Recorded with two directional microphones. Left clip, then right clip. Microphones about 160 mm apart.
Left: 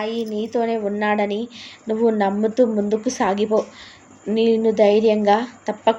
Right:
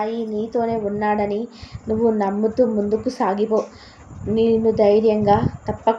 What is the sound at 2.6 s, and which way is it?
Speech, 50° left (ahead or behind).